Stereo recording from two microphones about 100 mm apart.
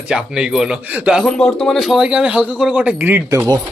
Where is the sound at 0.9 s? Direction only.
15° right (ahead or behind).